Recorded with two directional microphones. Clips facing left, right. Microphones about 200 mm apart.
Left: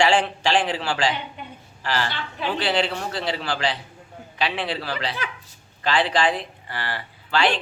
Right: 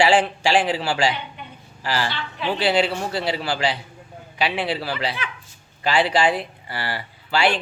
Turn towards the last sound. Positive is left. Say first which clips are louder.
# right 1 dB
turn(degrees=-10)  # may be behind; listen again after turning